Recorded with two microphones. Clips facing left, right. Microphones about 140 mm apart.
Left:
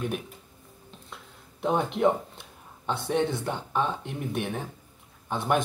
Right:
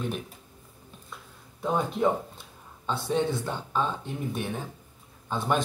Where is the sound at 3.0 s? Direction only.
55° left (ahead or behind).